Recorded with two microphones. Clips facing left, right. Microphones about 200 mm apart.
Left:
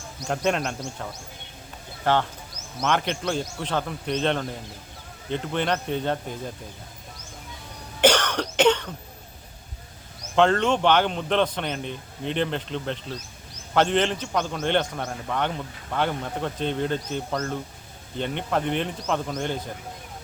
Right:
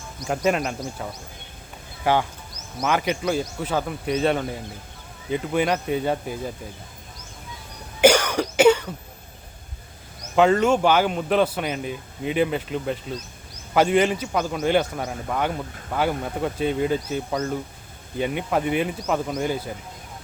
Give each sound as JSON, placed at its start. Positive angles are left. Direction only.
{"t": 0.3, "sound": "speech", "side_deg": -5}
{"t": 2.0, "sound": "a man's voice", "side_deg": -10}
{"t": 8.0, "sound": "cough", "side_deg": -10}
{"t": 10.3, "sound": "a man's voice", "side_deg": -10}